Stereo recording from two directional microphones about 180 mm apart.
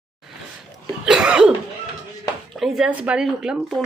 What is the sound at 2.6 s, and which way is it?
Speech, 5° right (ahead or behind).